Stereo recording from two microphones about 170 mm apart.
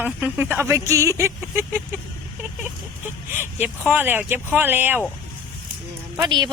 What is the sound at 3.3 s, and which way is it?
A man's voice, 10° right (ahead or behind).